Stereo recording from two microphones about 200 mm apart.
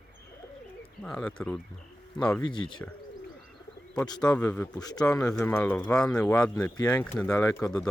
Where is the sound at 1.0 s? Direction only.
5° left (ahead or behind).